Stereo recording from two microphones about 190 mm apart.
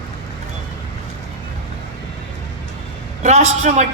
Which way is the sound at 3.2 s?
35° right (ahead or behind).